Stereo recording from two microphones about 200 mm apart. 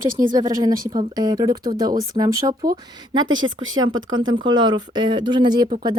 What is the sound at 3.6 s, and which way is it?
Speech, 85° right.